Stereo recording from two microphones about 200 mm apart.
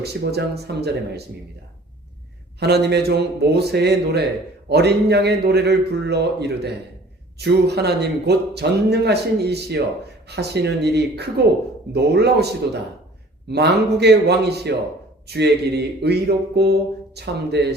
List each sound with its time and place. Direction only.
0.0 s speech: 55° right (ahead or behind)
2.6 s speech: 55° right (ahead or behind)